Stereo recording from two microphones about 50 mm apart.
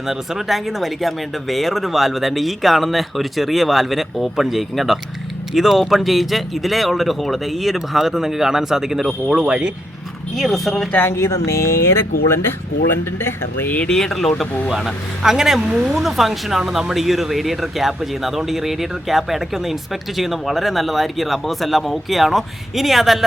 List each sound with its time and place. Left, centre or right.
0.1 s speech: centre
9.3 s speech: centre
10.3 s speech: centre
10.9 s speech: left
13.8 s speech: centre